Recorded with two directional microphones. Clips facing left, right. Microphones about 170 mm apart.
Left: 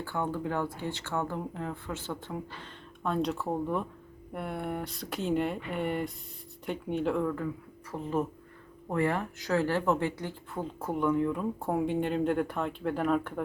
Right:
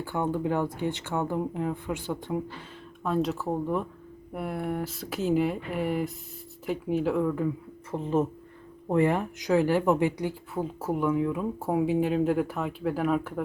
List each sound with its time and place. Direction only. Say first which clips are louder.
0.0 s speech: right 4 dB; 15° right (ahead or behind)
3.0 s speech: right 3 dB; centre (ahead or behind)
7.9 s speech: right 5 dB; 25° right (ahead or behind); by 13.4 s 5° right (ahead or behind)